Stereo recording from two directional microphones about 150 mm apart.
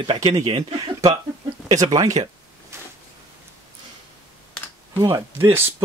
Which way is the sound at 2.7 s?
20° right (ahead or behind).